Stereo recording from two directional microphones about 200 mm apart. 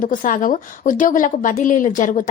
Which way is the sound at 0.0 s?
40° left (ahead or behind).